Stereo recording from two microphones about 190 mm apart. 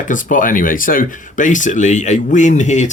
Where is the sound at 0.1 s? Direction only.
45° left (ahead or behind).